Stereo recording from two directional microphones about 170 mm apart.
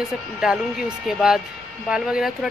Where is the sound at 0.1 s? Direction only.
5° right (ahead or behind).